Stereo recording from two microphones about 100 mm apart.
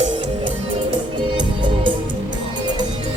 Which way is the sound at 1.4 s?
55° right (ahead or behind).